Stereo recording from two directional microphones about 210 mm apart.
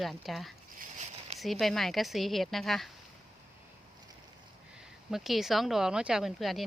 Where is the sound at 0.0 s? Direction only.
Centre (ahead or behind).